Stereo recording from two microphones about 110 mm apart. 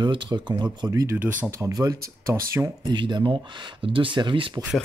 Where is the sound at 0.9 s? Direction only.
30° right (ahead or behind).